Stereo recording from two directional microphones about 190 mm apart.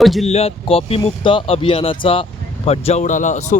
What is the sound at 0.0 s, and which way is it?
Speech, centre (ahead or behind).